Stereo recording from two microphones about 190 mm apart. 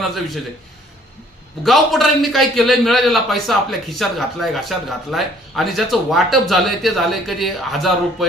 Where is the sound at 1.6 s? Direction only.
Centre (ahead or behind).